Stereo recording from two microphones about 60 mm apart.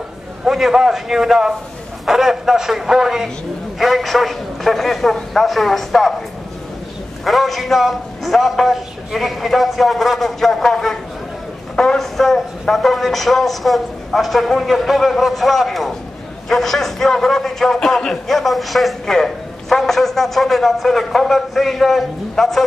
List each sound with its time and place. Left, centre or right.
0.5 s a man's voice: centre
7.2 s a man's voice: centre